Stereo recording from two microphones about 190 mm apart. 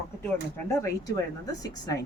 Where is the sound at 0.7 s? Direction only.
15° left (ahead or behind).